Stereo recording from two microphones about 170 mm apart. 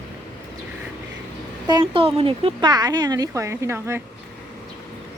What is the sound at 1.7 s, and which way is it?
Speech, 30° right (ahead or behind).